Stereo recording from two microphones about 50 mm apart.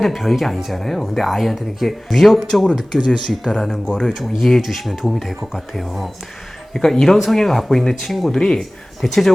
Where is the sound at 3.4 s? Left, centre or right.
Centre.